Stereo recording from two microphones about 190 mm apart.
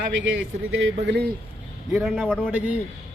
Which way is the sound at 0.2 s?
85° right.